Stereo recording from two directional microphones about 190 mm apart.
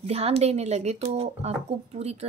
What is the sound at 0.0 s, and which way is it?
Speech, 35° right (ahead or behind).